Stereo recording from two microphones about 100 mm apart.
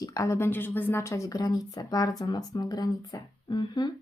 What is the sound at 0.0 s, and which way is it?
Speech, 35° left (ahead or behind).